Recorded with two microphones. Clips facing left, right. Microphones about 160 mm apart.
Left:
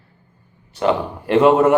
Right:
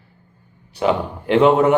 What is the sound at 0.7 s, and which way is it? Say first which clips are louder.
Speech: even; centre (ahead or behind).